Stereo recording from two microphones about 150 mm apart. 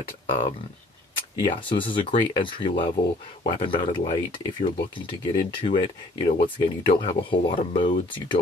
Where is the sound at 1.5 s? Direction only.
35° left (ahead or behind).